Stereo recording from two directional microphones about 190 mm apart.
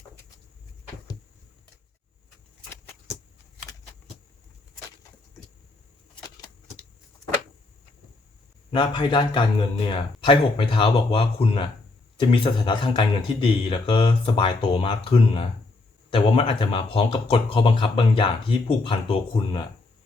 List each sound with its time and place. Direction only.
8.7 s speech: 25° left (ahead or behind)